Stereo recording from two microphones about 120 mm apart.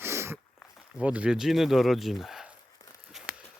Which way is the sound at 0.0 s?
20° right (ahead or behind).